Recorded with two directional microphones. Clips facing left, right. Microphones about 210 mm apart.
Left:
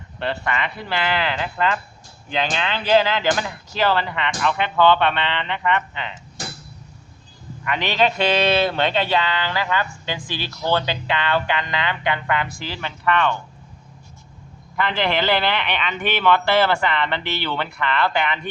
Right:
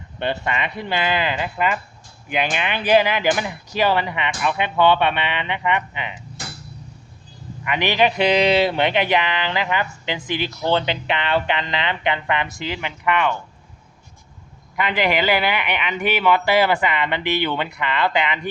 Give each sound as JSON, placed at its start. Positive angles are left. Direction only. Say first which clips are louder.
{"t": 0.2, "sound": "a man's voice", "louder": "right 1 dB", "side_deg": -20}
{"t": 7.6, "sound": "a man's voice", "louder": "right 2 dB", "side_deg": -15}
{"t": 14.8, "sound": "speech", "louder": "right 1 dB", "side_deg": -15}